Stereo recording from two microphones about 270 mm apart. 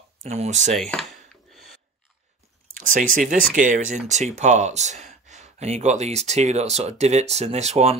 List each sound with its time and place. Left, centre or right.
0.2 s speech: right
0.7 s a sound: centre
2.7 s speech: right